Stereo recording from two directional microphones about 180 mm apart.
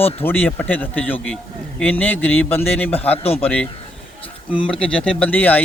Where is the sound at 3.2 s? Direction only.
35° left (ahead or behind).